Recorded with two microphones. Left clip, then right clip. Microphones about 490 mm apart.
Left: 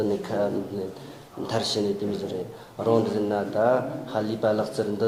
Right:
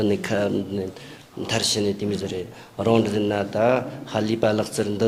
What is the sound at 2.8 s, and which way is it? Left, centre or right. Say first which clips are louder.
Speech: right 2 dB; right.